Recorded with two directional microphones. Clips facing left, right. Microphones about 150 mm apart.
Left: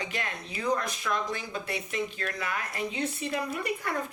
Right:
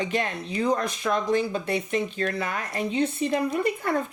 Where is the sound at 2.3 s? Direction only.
30° right (ahead or behind).